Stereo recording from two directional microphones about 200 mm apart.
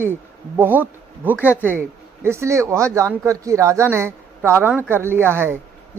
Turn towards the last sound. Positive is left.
turn(degrees=-10)  # may be behind; listen again after turning